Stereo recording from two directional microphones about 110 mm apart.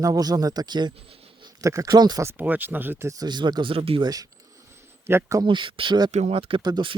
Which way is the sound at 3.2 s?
40° right (ahead or behind).